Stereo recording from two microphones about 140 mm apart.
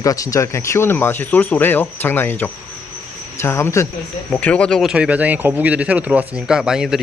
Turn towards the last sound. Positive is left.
turn(degrees=-5)  # may be behind; listen again after turning